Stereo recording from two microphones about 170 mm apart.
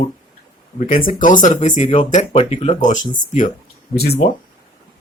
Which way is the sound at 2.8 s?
50° left (ahead or behind).